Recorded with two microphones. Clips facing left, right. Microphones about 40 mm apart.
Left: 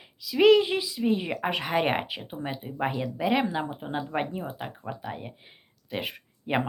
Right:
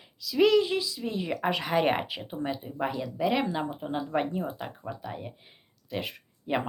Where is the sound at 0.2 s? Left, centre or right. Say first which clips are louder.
Left 3 dB; centre.